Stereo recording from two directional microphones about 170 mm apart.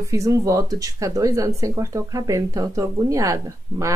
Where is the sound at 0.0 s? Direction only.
20° right (ahead or behind).